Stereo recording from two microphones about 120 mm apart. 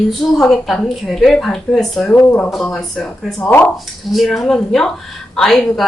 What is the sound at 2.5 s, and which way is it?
A woman's voice, 5° left (ahead or behind).